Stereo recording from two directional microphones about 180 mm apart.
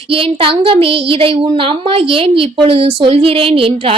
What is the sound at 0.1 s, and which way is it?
A woman's voice, 30° right (ahead or behind).